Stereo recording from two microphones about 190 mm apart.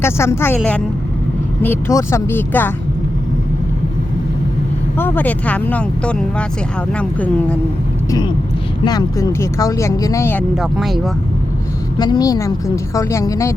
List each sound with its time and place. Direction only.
0.0 s speech: 15° left (ahead or behind)
4.9 s speech: 10° left (ahead or behind)
8.8 s speech: 20° left (ahead or behind)
10.6 s speech: centre (ahead or behind)
11.9 s speech: 20° left (ahead or behind)